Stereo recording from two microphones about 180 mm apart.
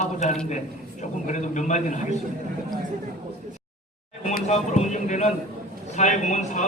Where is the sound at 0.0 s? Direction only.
40° left (ahead or behind).